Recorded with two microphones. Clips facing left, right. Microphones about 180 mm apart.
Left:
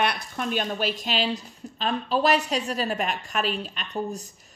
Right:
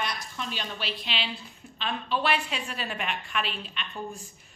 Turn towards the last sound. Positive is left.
turn(degrees=40)  # may be behind; listen again after turning